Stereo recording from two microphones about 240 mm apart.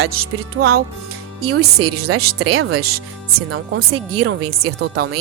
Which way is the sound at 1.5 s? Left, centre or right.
Right.